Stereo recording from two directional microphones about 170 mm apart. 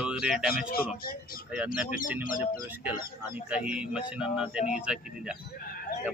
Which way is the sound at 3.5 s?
5° right (ahead or behind).